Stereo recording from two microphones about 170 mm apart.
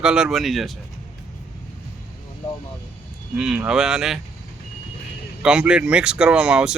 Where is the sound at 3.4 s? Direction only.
5° right (ahead or behind).